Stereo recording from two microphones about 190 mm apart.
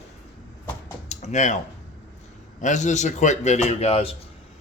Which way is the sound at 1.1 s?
40° left (ahead or behind).